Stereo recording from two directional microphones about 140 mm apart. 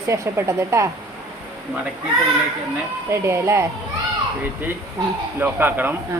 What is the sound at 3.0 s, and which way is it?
Speech, 20° right (ahead or behind).